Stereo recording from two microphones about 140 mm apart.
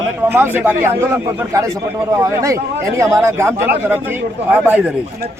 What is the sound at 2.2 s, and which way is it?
Speech, 20° right (ahead or behind).